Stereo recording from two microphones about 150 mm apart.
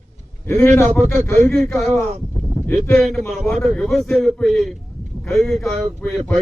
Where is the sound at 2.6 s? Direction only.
15° left (ahead or behind).